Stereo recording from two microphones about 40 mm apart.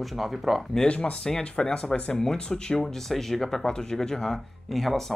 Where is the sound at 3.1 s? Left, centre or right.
Centre.